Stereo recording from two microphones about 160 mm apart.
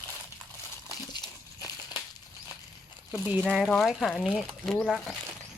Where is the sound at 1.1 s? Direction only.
25° left (ahead or behind).